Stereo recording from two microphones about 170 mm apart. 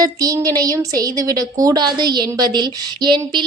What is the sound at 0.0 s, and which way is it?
A woman's voice, 20° right (ahead or behind).